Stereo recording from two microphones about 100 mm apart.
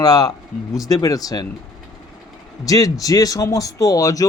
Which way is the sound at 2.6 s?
35° left (ahead or behind).